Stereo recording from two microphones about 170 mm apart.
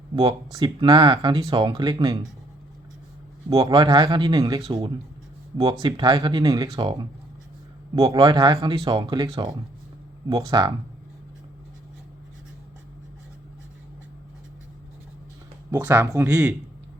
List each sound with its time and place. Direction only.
0.3 s speech: 25° right (ahead or behind)
3.5 s speech: 20° right (ahead or behind)
15.7 s speech: 20° right (ahead or behind)
16.3 s speech: 5° right (ahead or behind)